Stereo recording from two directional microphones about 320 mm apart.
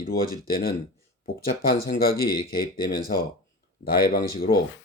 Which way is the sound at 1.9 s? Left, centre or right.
Left.